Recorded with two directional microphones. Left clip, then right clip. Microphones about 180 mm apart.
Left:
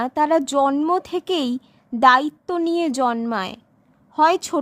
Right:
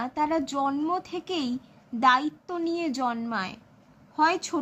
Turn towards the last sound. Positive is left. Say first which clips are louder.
# left 7 dB
turn(degrees=60)  # may be behind; listen again after turning